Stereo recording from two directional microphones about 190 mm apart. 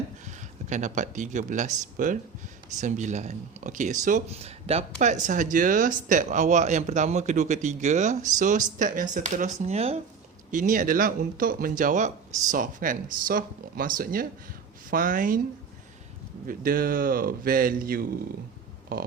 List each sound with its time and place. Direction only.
0.3 s speech: 40° right (ahead or behind)
16.5 s speech: 50° right (ahead or behind)